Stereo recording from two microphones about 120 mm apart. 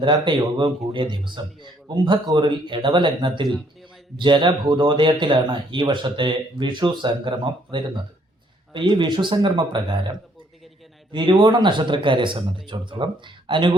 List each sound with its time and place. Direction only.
0.0 s speech: 40° right (ahead or behind)
3.5 s a sound: centre (ahead or behind)
4.2 s speech: 40° right (ahead or behind)